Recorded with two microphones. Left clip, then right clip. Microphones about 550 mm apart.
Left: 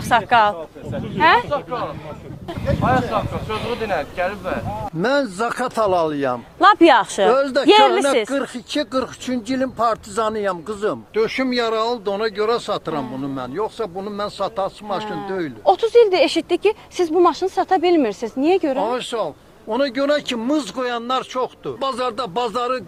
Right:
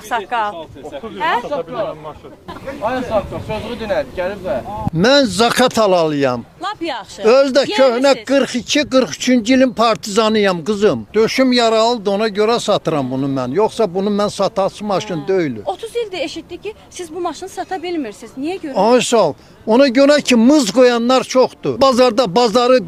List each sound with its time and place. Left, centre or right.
0.1 s speech: left
3.1 s speech: centre
4.9 s speech: right
6.6 s speech: left
7.3 s speech: right
15.6 s speech: left
18.8 s speech: right